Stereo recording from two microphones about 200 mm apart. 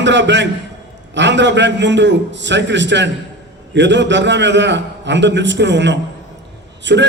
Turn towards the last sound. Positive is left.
turn(degrees=-60)  # may be behind; listen again after turning